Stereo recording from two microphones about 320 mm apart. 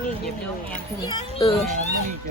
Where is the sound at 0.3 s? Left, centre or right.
Centre.